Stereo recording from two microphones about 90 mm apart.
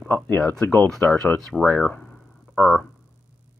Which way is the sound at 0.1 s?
20° left (ahead or behind).